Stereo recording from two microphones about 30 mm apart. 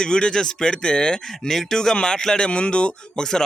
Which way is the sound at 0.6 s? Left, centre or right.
Left.